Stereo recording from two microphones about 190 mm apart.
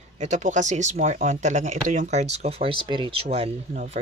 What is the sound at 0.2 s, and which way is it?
Speech, 40° right (ahead or behind).